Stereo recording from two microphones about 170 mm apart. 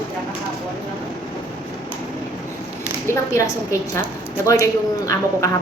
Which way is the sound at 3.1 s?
15° left (ahead or behind).